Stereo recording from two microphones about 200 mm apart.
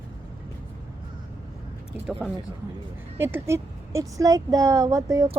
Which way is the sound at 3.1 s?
10° right (ahead or behind).